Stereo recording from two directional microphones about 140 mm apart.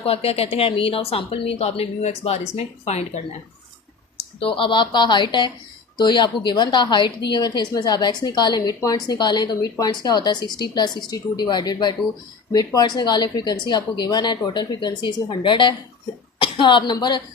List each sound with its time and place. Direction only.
0.0 s speech: 45° left (ahead or behind)
4.4 s a woman's voice: 40° left (ahead or behind)